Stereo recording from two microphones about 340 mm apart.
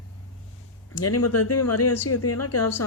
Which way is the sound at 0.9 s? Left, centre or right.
Left.